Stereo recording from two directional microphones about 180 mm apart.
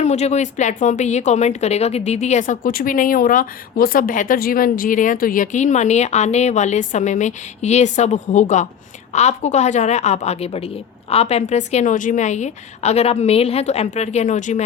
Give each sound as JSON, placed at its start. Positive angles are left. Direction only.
{"t": 0.0, "sound": "speech", "side_deg": 40}